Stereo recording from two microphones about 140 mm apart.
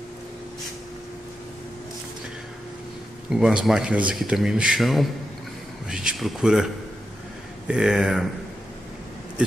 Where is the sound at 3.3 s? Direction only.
5° right (ahead or behind).